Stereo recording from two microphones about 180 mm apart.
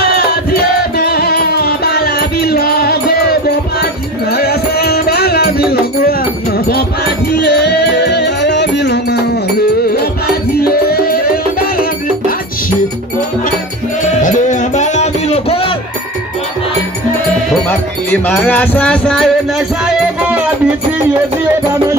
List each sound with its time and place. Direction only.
0.5 s music: 60° left (ahead or behind)
7.3 s music: 70° left (ahead or behind)
10.5 s music: 60° left (ahead or behind)
14.2 s music: 45° left (ahead or behind)
17.6 s music: 10° left (ahead or behind)